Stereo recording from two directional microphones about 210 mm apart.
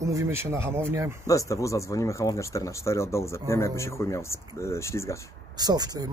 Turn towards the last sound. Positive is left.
turn(degrees=-20)  # may be behind; listen again after turning